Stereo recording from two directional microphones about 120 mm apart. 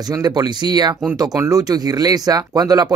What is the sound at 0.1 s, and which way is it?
Speech, 35° right (ahead or behind).